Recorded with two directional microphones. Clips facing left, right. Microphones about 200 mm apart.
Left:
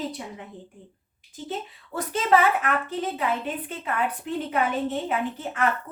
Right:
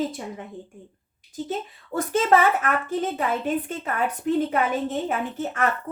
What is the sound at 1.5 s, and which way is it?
A woman's voice, 45° right (ahead or behind).